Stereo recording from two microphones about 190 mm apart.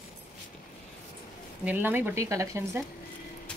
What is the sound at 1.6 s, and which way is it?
Speech, 10° right (ahead or behind).